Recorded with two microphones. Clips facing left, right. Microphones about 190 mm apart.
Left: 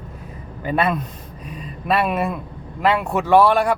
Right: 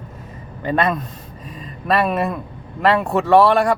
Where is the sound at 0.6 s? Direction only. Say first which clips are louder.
Right 1 dB; 10° left (ahead or behind).